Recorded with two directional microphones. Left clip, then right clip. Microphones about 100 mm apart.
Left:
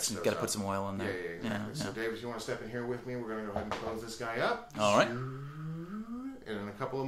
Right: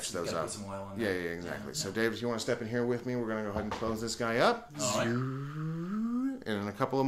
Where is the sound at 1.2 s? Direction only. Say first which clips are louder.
Right 1 dB; 40° right (ahead or behind).